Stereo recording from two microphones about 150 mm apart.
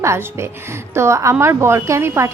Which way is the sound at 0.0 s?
20° right (ahead or behind).